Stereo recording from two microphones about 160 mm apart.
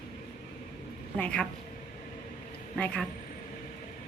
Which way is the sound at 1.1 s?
5° left (ahead or behind).